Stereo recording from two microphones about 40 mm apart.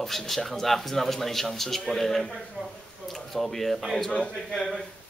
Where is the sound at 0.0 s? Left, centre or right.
Centre.